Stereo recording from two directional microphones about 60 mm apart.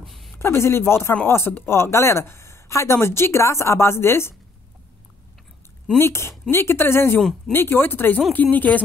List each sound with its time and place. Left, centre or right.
0.0 s a sound: centre
0.4 s speech: left
5.9 s speech: left
7.2 s speech: centre
7.5 s speech: left